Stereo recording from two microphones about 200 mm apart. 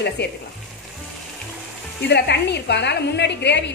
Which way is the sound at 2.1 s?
55° left (ahead or behind).